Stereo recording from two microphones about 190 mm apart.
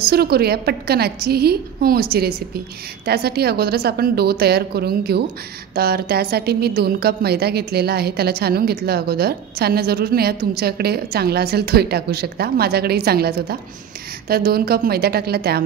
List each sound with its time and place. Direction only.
0.0 s a woman's voice: 55° right (ahead or behind)